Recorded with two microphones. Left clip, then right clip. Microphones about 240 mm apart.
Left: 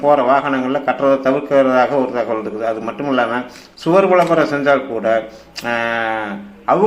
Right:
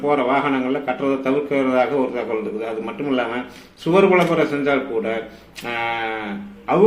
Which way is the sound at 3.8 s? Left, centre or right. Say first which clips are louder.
Left 3 dB; centre.